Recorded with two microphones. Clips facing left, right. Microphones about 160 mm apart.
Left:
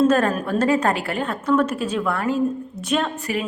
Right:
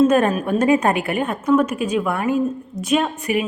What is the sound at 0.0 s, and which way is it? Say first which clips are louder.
A woman's voice: right 2 dB; 15° right (ahead or behind).